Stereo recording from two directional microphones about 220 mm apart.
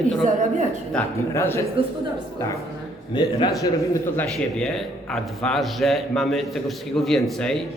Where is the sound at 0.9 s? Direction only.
10° left (ahead or behind).